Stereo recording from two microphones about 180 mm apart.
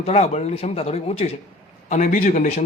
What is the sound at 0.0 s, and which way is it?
A man's voice, 35° left (ahead or behind).